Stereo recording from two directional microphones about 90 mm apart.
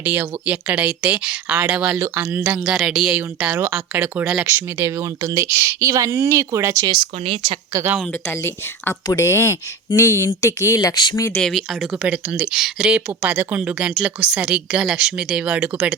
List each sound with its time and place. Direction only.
0.0 s speech: 15° right (ahead or behind)
2.6 s speech: 5° right (ahead or behind)
3.2 s speech: 15° right (ahead or behind)
4.4 s speech: 30° right (ahead or behind)
6.8 s speech: 55° right (ahead or behind)
7.3 s speech: 70° right (ahead or behind)
8.3 s speech: 25° left (ahead or behind)
11.3 s speech: 5° left (ahead or behind)
12.0 s speech: 15° right (ahead or behind)